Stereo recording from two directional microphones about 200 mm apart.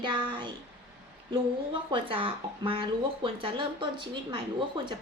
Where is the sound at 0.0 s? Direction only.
25° right (ahead or behind).